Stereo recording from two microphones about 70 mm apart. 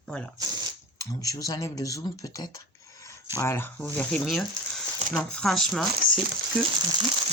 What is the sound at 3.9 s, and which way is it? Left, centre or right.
Speech, centre.